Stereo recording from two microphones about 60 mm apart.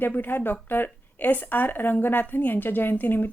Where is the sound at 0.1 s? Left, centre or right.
Left.